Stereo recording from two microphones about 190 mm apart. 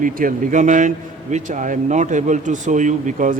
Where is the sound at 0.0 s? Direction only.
45° right (ahead or behind).